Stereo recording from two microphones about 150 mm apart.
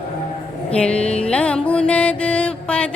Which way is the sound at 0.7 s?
5° left (ahead or behind).